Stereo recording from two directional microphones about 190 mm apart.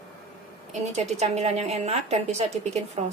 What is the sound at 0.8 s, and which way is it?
Speech, 35° right (ahead or behind).